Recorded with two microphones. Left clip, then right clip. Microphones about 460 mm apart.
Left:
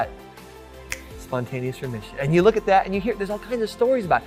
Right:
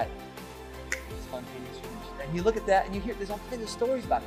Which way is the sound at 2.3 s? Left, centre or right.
Left.